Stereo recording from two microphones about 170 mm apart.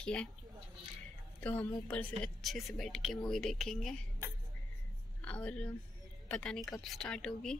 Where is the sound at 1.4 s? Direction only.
10° left (ahead or behind).